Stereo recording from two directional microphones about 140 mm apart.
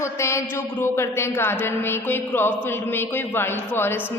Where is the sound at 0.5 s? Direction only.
20° left (ahead or behind).